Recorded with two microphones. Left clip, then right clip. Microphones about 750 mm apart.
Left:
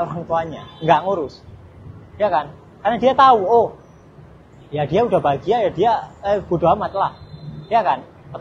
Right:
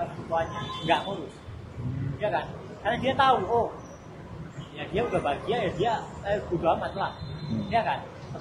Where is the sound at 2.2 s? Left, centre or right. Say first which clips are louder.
Left 10 dB; left.